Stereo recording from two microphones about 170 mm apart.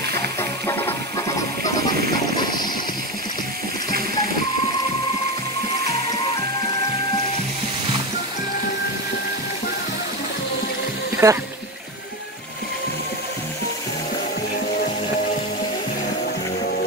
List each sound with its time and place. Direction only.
0.4 s music: 15° left (ahead or behind)
2.4 s a sound: 25° left (ahead or behind)
11.2 s speech: 15° right (ahead or behind)